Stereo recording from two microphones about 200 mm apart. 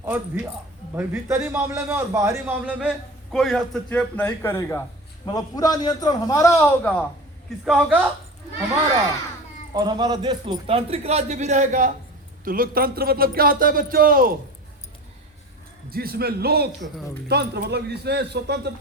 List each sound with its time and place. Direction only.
0.0 s a man's voice: 10° right (ahead or behind); by 6.9 s 10° left (ahead or behind)
7.6 s a woman's voice: 5° right (ahead or behind)
9.7 s a man's voice: 20° right (ahead or behind); by 14.3 s 45° right (ahead or behind)
15.9 s a man's voice: 50° right (ahead or behind)